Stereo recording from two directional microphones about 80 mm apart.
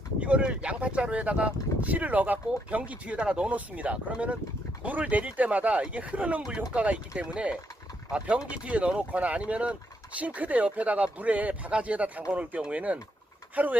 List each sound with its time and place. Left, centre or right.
0.2 s speech: centre